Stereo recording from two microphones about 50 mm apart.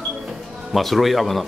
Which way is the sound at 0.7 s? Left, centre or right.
Centre.